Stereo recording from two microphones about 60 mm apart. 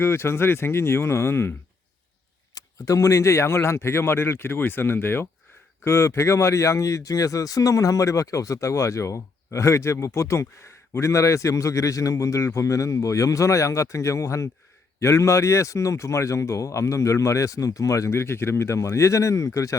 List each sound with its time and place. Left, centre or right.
0.0 s speech: left
2.6 s speech: left
5.8 s speech: left
18.1 s speech: left